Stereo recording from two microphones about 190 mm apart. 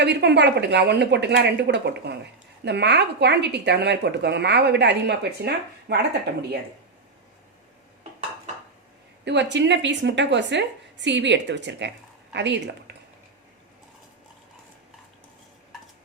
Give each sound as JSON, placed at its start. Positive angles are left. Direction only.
{"t": 0.0, "sound": "speech", "side_deg": -65}
{"t": 9.2, "sound": "a woman's voice", "side_deg": -65}